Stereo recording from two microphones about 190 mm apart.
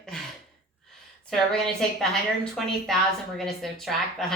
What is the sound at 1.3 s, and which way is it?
A woman's voice, centre (ahead or behind).